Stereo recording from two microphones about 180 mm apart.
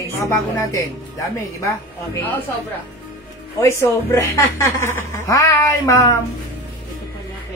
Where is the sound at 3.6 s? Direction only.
15° left (ahead or behind).